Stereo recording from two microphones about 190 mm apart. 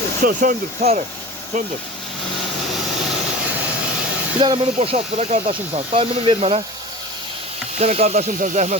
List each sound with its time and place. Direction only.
0.3 s speech: 40° right (ahead or behind)
4.4 s speech: 30° right (ahead or behind)
7.8 s speech: 35° right (ahead or behind)